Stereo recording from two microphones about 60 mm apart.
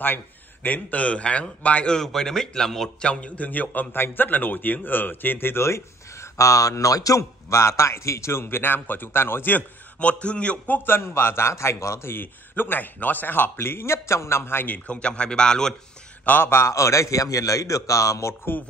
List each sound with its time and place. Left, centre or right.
0.0 s a man's voice: left; by 3.1 s centre
3.1 s a man's voice: left
6.3 s a man's voice: left
9.6 s a man's voice: left
10.9 s a man's voice: left
14.9 s a man's voice: centre
16.3 s a man's voice: left